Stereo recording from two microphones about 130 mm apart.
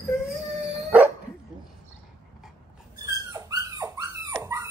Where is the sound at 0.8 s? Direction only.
10° right (ahead or behind).